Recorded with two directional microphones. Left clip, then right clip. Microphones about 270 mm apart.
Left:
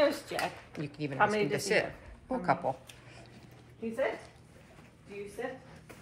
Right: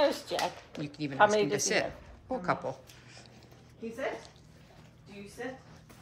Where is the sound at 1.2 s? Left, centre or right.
Right.